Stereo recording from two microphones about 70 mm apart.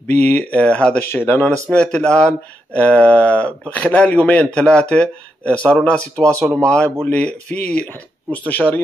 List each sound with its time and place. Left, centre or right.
0.0 s speech: left
1.1 s speech: left
1.7 s speech: centre